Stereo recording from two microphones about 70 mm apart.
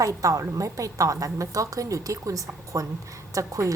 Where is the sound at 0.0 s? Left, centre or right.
Right.